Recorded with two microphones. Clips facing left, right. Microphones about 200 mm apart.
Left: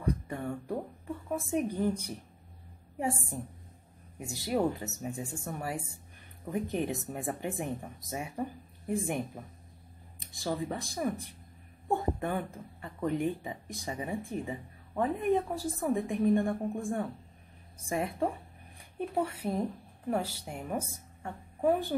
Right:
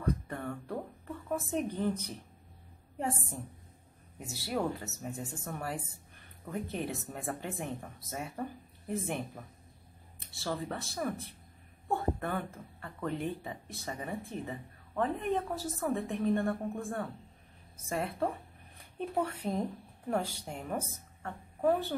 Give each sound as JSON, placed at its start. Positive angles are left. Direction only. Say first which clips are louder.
{"t": 0.0, "sound": "a sound", "louder": "left 1 dB", "side_deg": 10}
{"t": 1.3, "sound": "speech", "louder": "left 2 dB", "side_deg": 10}
{"t": 4.3, "sound": "a woman's voice", "louder": "left 4 dB", "side_deg": 15}